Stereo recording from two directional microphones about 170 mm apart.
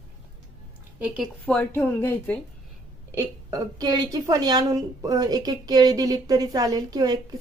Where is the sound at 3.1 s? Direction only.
20° right (ahead or behind).